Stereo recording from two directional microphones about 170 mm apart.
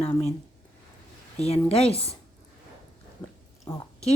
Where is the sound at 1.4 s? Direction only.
35° left (ahead or behind).